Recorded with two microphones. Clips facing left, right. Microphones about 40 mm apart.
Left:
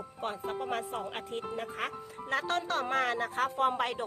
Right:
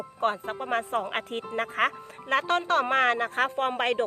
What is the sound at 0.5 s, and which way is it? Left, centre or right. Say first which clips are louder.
Speech: right 6 dB; right.